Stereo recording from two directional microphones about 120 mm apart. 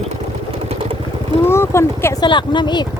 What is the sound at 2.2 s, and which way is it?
Speech, 40° left (ahead or behind).